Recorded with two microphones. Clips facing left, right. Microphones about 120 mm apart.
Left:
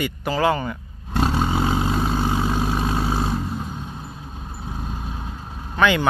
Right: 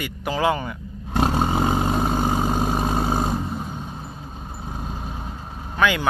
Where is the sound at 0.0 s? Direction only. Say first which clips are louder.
Left 2 dB; 10° right (ahead or behind).